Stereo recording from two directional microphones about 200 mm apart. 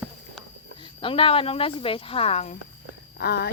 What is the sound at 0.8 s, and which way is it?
Speech, 25° left (ahead or behind).